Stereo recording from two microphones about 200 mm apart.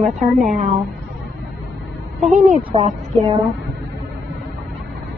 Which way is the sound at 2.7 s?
30° right (ahead or behind).